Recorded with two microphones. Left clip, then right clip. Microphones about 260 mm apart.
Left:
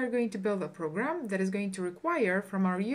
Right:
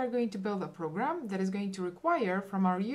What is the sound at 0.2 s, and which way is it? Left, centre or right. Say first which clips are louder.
Speech: left 3 dB; centre.